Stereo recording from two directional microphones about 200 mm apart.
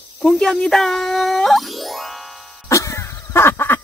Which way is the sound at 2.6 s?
15° left (ahead or behind).